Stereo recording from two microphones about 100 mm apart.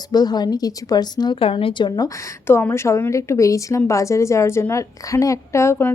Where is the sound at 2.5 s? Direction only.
25° left (ahead or behind).